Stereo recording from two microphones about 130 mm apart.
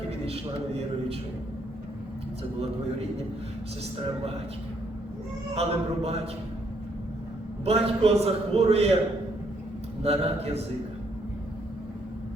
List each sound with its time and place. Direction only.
0.3 s a man's voice: 50° right (ahead or behind)
5.5 s a man's voice: 55° right (ahead or behind)
7.6 s a man's voice: 50° right (ahead or behind)
10.0 s a man's voice: 50° right (ahead or behind)